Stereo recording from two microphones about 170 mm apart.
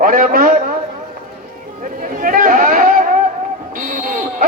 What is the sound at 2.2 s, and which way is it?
Chatter, 55° right (ahead or behind).